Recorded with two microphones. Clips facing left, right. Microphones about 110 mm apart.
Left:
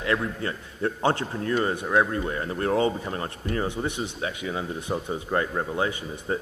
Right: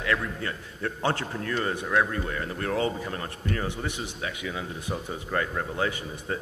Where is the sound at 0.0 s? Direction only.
25° left (ahead or behind).